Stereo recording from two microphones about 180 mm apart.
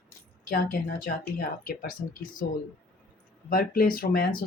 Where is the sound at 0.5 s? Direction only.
50° left (ahead or behind).